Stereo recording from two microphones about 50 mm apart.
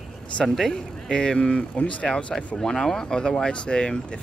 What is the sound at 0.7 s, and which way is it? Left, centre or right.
Speech, centre.